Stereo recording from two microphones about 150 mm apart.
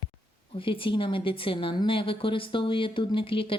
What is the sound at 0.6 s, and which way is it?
Speech, 35° left (ahead or behind).